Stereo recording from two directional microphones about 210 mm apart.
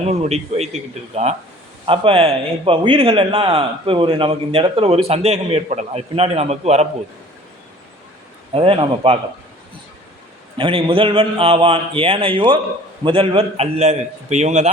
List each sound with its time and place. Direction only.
0.1 s a man's voice: 30° right (ahead or behind)
8.5 s a man's voice: 25° right (ahead or behind)
10.6 s a man's voice: 25° right (ahead or behind)